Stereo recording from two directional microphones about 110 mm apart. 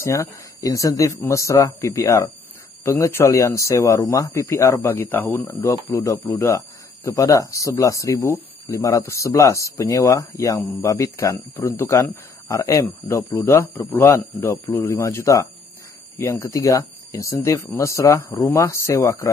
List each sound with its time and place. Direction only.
0.0 s speech: 30° left (ahead or behind)
4.9 s speech: 20° left (ahead or behind)
13.7 s speech: 20° left (ahead or behind)